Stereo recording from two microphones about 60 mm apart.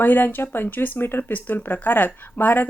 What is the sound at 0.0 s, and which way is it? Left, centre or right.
Speech, left.